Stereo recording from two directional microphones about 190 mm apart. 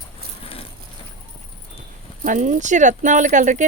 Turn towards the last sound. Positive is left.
turn(degrees=-40)  # may be behind; listen again after turning